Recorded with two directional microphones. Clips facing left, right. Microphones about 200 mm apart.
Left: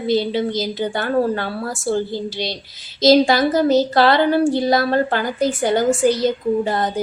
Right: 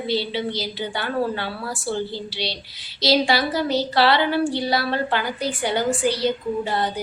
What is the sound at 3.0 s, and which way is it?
Speech, 45° left (ahead or behind).